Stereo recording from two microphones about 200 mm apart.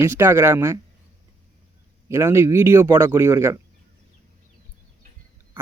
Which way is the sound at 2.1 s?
15° right (ahead or behind).